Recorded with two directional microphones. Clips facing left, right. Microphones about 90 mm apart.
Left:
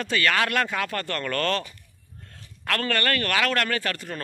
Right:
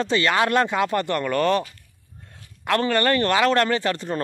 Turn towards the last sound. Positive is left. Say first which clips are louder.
# right 6 dB
turn(degrees=-25)  # may be behind; listen again after turning